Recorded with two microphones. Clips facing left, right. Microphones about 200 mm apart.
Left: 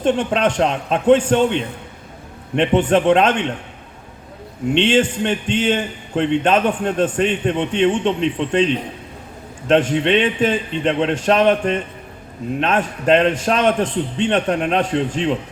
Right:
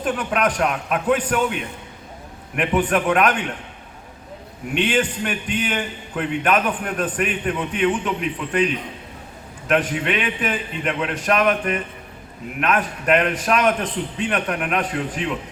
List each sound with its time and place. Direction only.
0.0 s a man's voice: 25° left (ahead or behind)
4.7 s a man's voice: 25° left (ahead or behind)